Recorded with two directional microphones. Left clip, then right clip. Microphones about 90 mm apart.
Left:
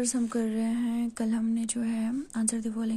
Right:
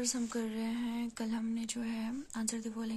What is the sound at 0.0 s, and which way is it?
Speech, 45° left (ahead or behind).